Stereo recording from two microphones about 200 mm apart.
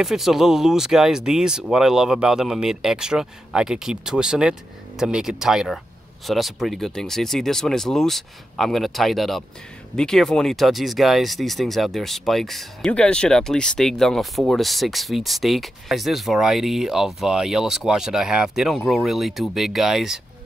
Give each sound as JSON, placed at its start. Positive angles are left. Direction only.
{"t": 0.0, "sound": "speech", "side_deg": 0}